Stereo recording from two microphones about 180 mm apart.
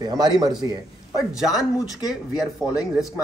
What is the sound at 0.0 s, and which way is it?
Speech, 20° right (ahead or behind).